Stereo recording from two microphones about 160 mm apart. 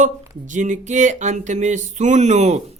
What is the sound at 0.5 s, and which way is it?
Speech, 50° right (ahead or behind).